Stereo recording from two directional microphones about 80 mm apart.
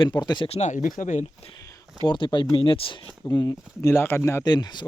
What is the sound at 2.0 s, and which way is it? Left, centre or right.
Speech, left.